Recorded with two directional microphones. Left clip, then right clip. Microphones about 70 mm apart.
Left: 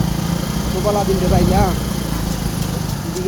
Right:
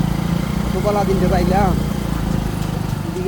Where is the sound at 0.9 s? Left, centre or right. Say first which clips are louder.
Even; centre.